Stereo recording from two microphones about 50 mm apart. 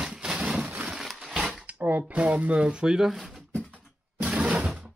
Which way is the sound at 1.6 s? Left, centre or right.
Right.